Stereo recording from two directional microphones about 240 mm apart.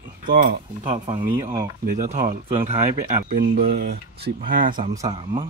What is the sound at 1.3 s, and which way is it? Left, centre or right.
Speech, centre.